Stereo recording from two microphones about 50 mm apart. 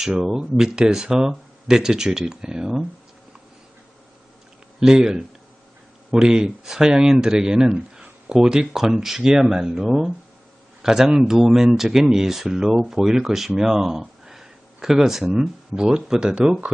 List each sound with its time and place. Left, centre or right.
0.1 s speech: centre
4.8 s speech: centre
15.4 s speech: centre